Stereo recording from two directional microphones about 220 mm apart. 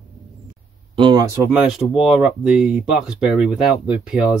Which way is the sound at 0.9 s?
20° right (ahead or behind).